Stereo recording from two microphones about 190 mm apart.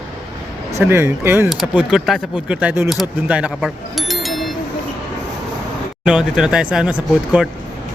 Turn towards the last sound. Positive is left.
turn(degrees=-5)  # may be behind; listen again after turning